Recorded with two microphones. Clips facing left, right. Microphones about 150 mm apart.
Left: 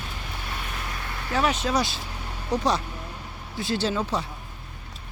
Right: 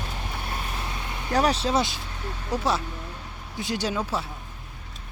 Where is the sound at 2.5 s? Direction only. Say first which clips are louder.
Left 2 dB; 5° right (ahead or behind).